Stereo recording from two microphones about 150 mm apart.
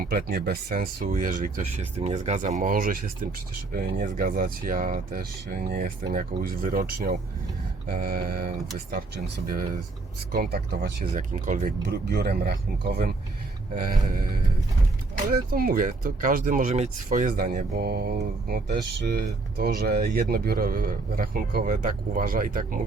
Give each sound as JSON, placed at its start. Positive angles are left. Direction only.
{"t": 0.0, "sound": "speech", "side_deg": -80}
{"t": 2.0, "sound": "speech", "side_deg": -45}
{"t": 3.7, "sound": "speech", "side_deg": -75}
{"t": 8.9, "sound": "speech", "side_deg": -85}
{"t": 11.1, "sound": "speech", "side_deg": -60}
{"t": 15.3, "sound": "speech", "side_deg": -75}
{"t": 18.4, "sound": "speech", "side_deg": -80}
{"t": 20.3, "sound": "speech", "side_deg": -75}